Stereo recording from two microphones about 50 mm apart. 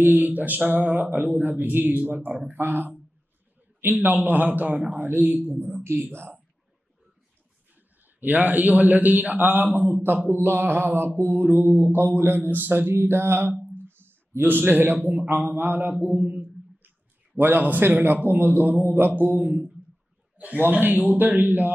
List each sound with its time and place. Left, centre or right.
0.0 s a man's voice: right
5.9 s speech: right
8.2 s a man's voice: right
10.4 s a man's voice: right